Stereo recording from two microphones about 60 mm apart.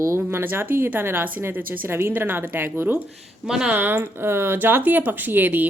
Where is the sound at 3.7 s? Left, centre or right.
Right.